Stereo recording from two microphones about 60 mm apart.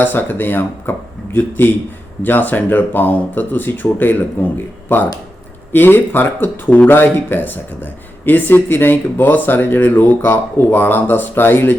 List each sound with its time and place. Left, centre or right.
0.0 s speech: left